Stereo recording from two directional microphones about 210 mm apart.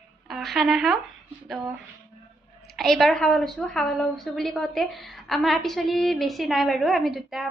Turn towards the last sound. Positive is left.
turn(degrees=0)  # may be behind; listen again after turning